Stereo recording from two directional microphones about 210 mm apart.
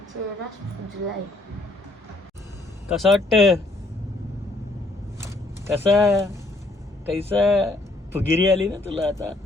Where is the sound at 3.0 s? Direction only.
Centre (ahead or behind).